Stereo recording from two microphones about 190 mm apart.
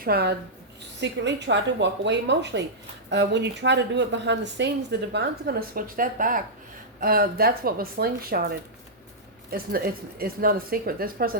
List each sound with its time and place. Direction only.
0.0 s a woman's voice: 55° right (ahead or behind)